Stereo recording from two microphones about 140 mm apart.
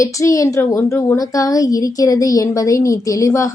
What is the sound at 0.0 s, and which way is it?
A woman's voice, 25° left (ahead or behind).